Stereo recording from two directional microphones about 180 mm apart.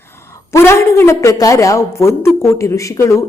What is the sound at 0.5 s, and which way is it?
A woman's voice, 15° left (ahead or behind).